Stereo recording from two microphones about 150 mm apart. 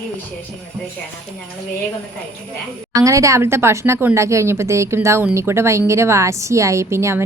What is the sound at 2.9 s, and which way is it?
A woman's voice, 20° right (ahead or behind).